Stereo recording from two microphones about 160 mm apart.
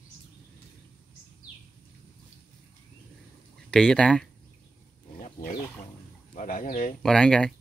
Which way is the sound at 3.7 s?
5° left (ahead or behind).